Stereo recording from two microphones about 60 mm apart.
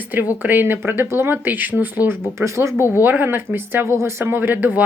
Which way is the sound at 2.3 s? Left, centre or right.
Right.